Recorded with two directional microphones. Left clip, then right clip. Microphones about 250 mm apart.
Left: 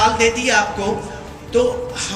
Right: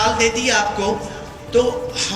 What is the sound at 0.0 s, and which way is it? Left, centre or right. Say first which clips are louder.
A man's voice: left 2 dB; centre.